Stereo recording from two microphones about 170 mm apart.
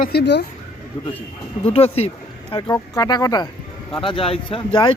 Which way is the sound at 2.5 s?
25° left (ahead or behind).